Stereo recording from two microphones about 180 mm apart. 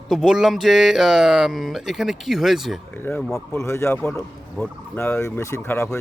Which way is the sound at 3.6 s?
15° left (ahead or behind).